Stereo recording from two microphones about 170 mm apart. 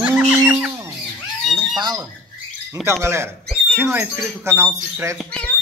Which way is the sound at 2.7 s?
15° right (ahead or behind).